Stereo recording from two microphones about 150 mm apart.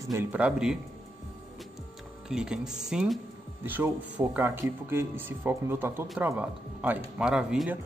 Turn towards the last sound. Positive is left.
turn(degrees=-5)  # may be behind; listen again after turning